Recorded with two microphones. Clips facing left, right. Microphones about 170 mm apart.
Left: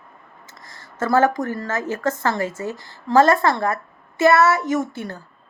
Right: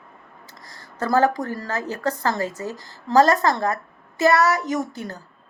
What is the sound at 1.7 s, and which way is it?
A woman's voice, 35° right (ahead or behind).